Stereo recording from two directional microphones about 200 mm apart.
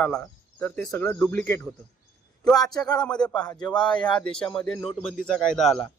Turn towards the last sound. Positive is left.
turn(degrees=0)  # may be behind; listen again after turning